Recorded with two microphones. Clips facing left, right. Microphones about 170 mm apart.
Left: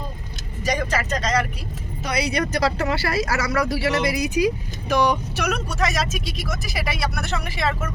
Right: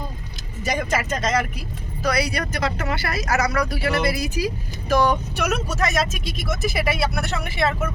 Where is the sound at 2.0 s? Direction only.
25° left (ahead or behind).